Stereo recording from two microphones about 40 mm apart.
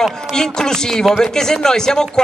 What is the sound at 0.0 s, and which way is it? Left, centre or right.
Speech, centre.